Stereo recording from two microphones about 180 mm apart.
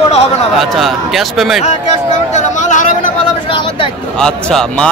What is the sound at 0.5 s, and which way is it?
A man's voice, centre (ahead or behind).